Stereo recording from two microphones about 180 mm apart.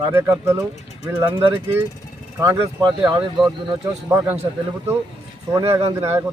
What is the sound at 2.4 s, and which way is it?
Speech, 15° right (ahead or behind).